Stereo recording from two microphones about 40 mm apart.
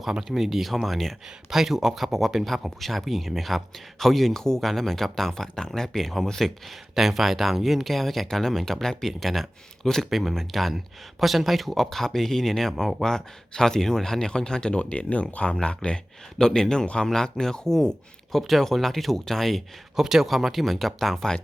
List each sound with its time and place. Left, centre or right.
0.0 s speech: centre
20.0 s speech: centre